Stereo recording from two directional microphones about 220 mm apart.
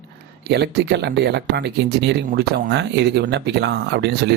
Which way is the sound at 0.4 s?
50° right (ahead or behind).